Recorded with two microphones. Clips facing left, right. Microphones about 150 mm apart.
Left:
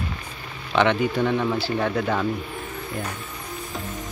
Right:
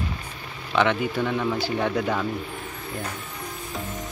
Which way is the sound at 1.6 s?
15° right (ahead or behind).